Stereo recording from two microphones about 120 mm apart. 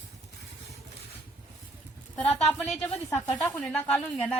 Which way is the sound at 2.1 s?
10° left (ahead or behind).